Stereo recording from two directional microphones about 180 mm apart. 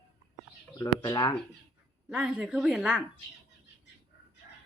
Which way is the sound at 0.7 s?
20° left (ahead or behind).